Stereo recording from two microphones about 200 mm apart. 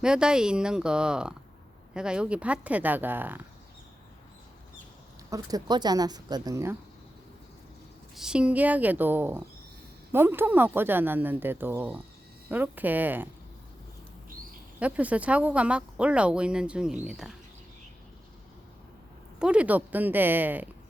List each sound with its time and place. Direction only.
0.0 s speech: 5° right (ahead or behind)
5.3 s speech: 20° right (ahead or behind)
8.1 s speech: 5° right (ahead or behind)
14.8 s speech: 5° right (ahead or behind)
19.4 s speech: 5° right (ahead or behind)